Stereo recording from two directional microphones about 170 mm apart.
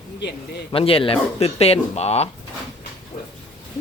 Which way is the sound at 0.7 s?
35° left (ahead or behind).